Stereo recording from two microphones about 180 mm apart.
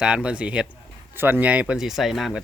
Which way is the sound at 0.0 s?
5° right (ahead or behind).